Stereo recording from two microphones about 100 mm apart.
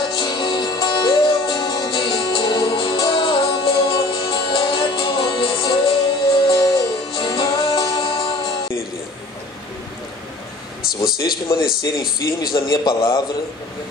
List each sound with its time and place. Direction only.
0.0 s music: 55° left (ahead or behind)
11.0 s speech: 40° left (ahead or behind)